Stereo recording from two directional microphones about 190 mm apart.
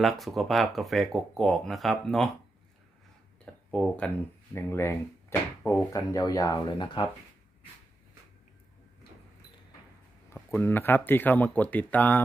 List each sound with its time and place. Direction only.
0.0 s speech: centre (ahead or behind)
3.4 s speech: 5° left (ahead or behind); by 7.1 s 25° left (ahead or behind)
10.3 s speech: 10° left (ahead or behind)